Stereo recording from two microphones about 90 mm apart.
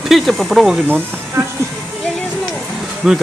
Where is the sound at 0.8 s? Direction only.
25° right (ahead or behind).